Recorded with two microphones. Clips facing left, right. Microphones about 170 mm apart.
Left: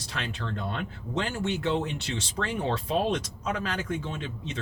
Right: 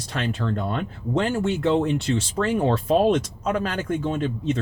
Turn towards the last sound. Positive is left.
turn(degrees=-50)  # may be behind; listen again after turning